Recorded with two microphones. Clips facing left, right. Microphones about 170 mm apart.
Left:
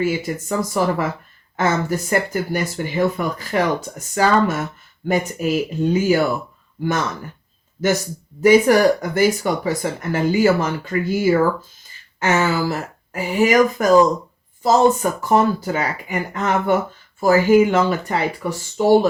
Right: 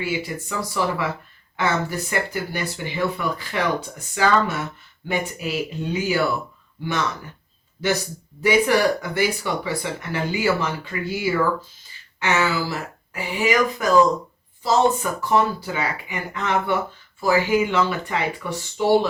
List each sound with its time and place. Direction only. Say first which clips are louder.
0.0 s speech: left 5 dB; 45° left (ahead or behind)
7.8 s speech: left 4 dB; 45° left (ahead or behind)